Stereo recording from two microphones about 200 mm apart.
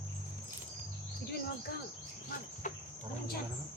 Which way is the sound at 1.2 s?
50° left (ahead or behind).